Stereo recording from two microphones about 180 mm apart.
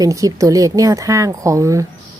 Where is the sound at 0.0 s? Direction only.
20° right (ahead or behind).